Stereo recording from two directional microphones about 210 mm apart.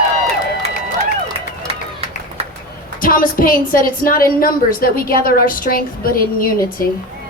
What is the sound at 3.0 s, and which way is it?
A woman's voice, 40° left (ahead or behind).